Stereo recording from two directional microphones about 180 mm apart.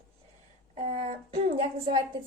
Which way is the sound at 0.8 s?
40° right (ahead or behind).